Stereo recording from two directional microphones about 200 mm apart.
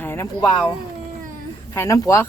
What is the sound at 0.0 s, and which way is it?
Speech, 10° left (ahead or behind).